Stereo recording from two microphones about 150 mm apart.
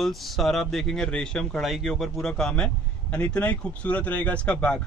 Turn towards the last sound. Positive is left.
turn(degrees=5)  # may be behind; listen again after turning